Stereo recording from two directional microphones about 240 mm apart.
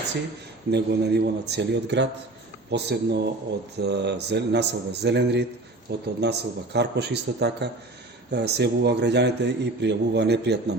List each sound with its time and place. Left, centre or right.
0.7 s a man's voice: right